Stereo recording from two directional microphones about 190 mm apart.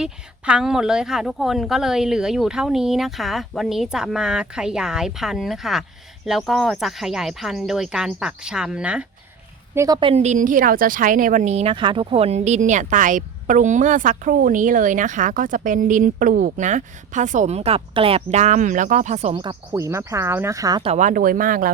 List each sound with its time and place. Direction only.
0.0 s speech: 5° right (ahead or behind)
9.7 s a woman's voice: 20° right (ahead or behind); by 19.4 s 35° right (ahead or behind)
19.7 s speech: 15° right (ahead or behind)
20.9 s speech: 40° right (ahead or behind)